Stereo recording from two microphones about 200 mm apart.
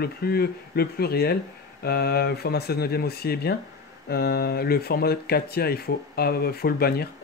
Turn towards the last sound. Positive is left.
turn(degrees=50)  # may be behind; listen again after turning